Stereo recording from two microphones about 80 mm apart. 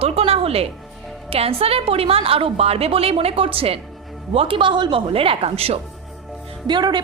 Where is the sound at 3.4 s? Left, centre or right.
Right.